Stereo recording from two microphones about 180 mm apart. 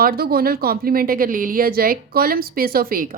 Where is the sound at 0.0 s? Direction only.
55° right (ahead or behind).